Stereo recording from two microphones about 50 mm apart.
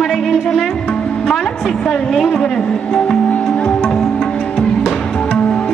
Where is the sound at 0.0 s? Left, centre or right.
Centre.